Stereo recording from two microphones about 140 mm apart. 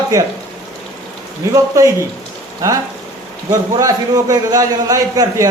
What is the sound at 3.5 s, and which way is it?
A man's voice, 25° right (ahead or behind).